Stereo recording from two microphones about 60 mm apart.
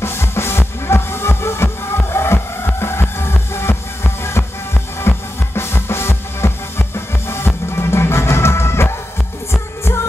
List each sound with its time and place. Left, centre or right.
0.0 s music: left